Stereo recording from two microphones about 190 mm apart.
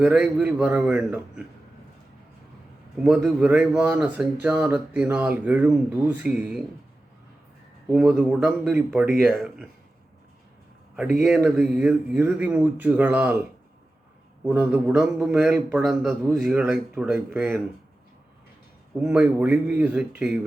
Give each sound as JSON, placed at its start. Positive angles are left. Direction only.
{"t": 0.0, "sound": "speech", "side_deg": -5}
{"t": 3.0, "sound": "speech", "side_deg": 0}
{"t": 7.9, "sound": "a man's voice", "side_deg": -5}
{"t": 11.3, "sound": "speech", "side_deg": -5}
{"t": 14.4, "sound": "a man's voice", "side_deg": -5}
{"t": 19.0, "sound": "speech", "side_deg": -10}